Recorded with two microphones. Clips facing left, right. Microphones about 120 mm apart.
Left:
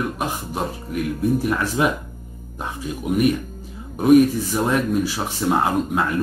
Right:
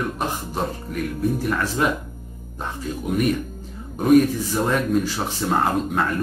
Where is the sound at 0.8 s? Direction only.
10° left (ahead or behind).